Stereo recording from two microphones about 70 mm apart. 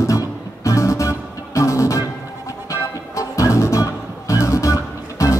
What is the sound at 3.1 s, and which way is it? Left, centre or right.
Music, left.